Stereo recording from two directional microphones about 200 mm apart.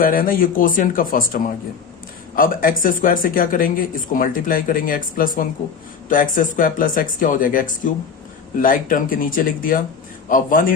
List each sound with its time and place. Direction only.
0.0 s speech: 45° left (ahead or behind)